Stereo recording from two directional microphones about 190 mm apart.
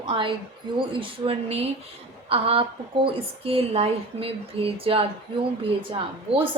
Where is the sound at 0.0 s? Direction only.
25° right (ahead or behind).